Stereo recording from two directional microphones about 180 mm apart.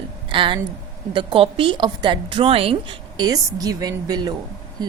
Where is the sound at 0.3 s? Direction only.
25° right (ahead or behind).